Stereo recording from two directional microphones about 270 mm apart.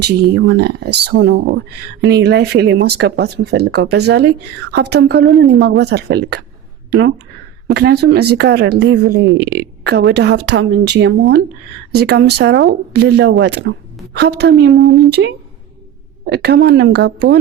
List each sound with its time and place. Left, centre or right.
0.3 s speech: right
7.7 s speech: right